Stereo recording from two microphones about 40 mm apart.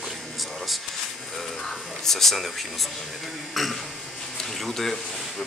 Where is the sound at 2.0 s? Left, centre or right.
Centre.